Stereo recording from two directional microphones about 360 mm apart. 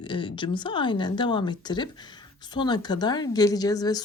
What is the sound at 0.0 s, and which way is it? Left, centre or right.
Speech, centre.